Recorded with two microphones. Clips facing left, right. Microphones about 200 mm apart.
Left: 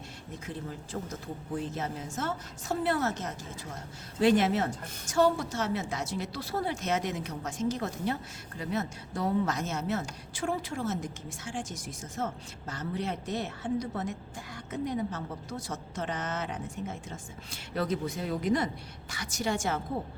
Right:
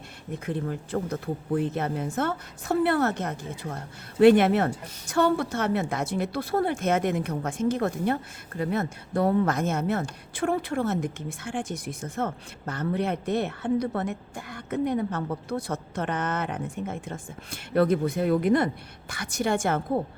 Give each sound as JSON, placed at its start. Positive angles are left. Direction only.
{"t": 0.3, "sound": "a woman's voice", "side_deg": -60}